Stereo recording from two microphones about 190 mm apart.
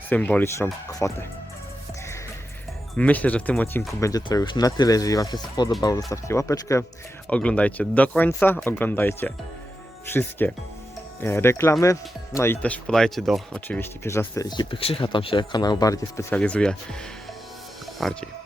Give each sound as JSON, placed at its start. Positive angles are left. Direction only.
{"t": 0.1, "sound": "speech", "side_deg": 10}
{"t": 3.0, "sound": "speech", "side_deg": 10}
{"t": 16.3, "sound": "speech", "side_deg": 5}
{"t": 17.9, "sound": "speech", "side_deg": 5}